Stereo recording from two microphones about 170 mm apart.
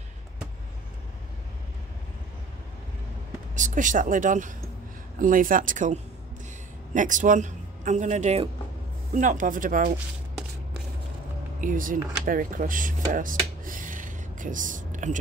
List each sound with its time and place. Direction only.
3.5 s a man's voice: 50° right (ahead or behind)
11.6 s speech: 55° right (ahead or behind)